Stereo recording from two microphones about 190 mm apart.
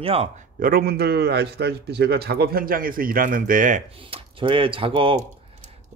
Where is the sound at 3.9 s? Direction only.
25° right (ahead or behind).